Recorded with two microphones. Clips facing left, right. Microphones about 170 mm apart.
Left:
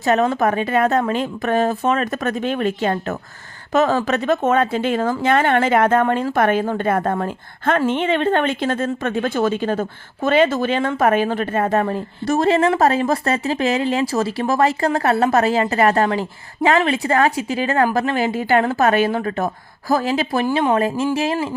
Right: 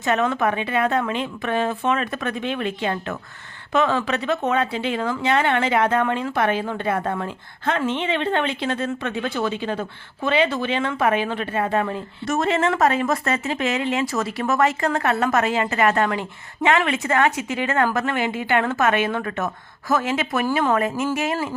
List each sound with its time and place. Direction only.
0.0 s a woman's voice: 35° left (ahead or behind)